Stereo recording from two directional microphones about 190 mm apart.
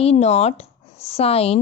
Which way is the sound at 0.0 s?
35° left (ahead or behind).